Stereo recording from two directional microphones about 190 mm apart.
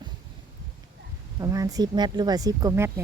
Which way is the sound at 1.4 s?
20° right (ahead or behind).